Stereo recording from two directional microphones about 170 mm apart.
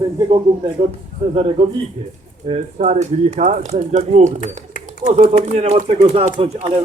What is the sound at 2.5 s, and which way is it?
Speech, 40° right (ahead or behind).